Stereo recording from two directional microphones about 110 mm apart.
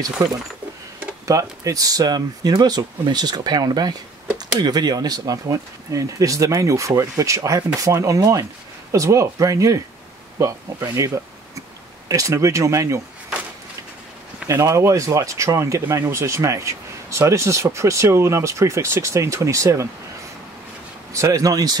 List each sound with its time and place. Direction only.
1.2 s speech: 30° right (ahead or behind)
12.1 s speech: 30° right (ahead or behind)
14.5 s speech: 25° right (ahead or behind)
21.1 s speech: 30° right (ahead or behind)